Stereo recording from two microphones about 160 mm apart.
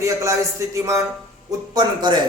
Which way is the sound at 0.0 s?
20° right (ahead or behind).